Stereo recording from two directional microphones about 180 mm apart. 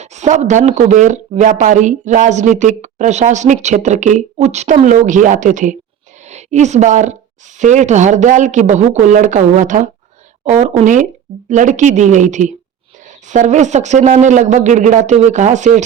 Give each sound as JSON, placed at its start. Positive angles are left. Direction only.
{"t": 0.0, "sound": "a woman's voice", "side_deg": -40}